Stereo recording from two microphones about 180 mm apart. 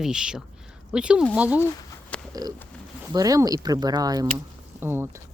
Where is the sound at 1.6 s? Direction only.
10° left (ahead or behind).